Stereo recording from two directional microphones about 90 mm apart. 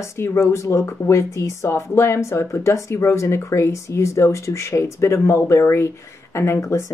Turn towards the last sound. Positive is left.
turn(degrees=35)  # may be behind; listen again after turning